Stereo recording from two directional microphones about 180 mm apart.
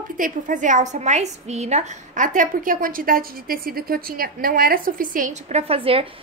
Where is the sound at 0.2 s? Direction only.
45° right (ahead or behind).